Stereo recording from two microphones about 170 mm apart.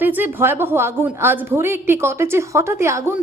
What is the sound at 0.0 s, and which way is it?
A woman's voice, 10° right (ahead or behind).